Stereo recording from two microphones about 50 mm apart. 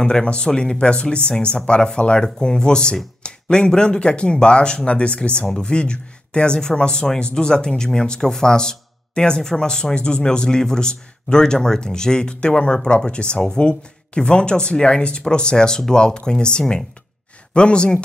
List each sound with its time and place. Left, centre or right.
0.0 s speech: centre